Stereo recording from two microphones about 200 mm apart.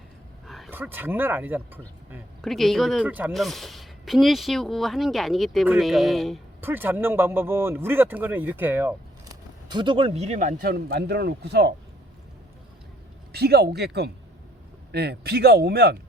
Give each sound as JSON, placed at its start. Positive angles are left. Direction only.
{"t": 0.4, "sound": "a sound", "side_deg": 0}
{"t": 0.7, "sound": "speech", "side_deg": -10}
{"t": 2.4, "sound": "speech", "side_deg": 0}
{"t": 6.6, "sound": "speech", "side_deg": -10}
{"t": 9.6, "sound": "speech", "side_deg": -25}
{"t": 13.3, "sound": "speech", "side_deg": -55}